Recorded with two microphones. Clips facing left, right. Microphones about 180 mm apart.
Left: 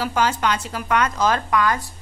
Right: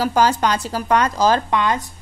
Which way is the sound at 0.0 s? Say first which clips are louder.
Right 4 dB; 35° right (ahead or behind).